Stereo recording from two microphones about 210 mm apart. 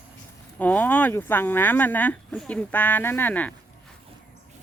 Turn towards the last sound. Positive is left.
turn(degrees=5)  # may be behind; listen again after turning